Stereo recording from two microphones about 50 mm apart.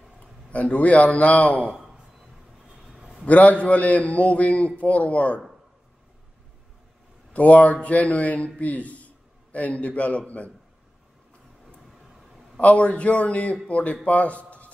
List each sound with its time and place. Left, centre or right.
0.5 s a man's voice: left
3.3 s a man's voice: left
7.3 s a man's voice: left
12.5 s a man's voice: left